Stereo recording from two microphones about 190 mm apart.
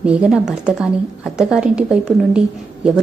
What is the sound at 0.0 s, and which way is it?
A woman's voice, 5° right (ahead or behind).